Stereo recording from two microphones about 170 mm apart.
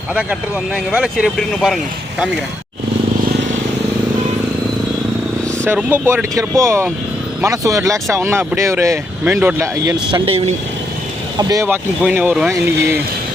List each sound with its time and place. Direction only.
0.1 s speech: 5° right (ahead or behind)
5.6 s speech: 15° right (ahead or behind); by 10.5 s 35° right (ahead or behind)
11.3 s speech: 20° right (ahead or behind)